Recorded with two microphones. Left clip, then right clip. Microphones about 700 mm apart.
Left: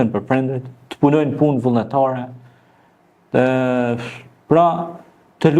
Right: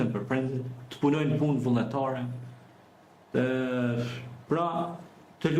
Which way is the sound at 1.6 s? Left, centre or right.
Left.